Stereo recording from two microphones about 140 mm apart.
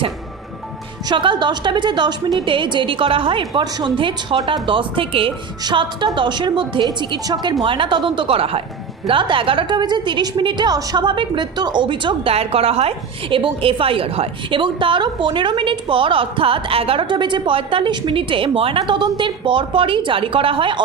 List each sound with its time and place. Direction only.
1.0 s a woman's voice: 35° right (ahead or behind)